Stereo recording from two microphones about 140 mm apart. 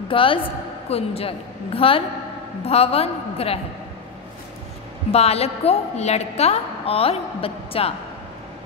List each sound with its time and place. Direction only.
0.1 s a woman's voice: 40° left (ahead or behind)
5.1 s a woman's voice: 45° left (ahead or behind)